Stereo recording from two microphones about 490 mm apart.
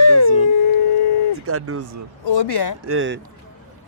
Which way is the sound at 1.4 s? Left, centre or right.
Right.